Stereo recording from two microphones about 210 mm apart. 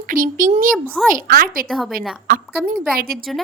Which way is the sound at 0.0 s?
40° right (ahead or behind).